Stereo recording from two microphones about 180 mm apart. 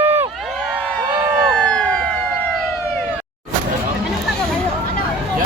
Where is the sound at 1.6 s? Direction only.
5° left (ahead or behind).